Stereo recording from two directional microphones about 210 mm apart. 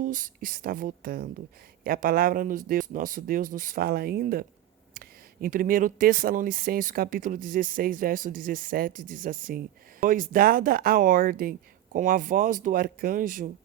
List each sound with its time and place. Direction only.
0.0 s speech: 40° right (ahead or behind)